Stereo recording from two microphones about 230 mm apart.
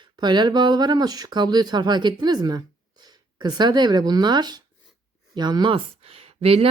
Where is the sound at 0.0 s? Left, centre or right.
Centre.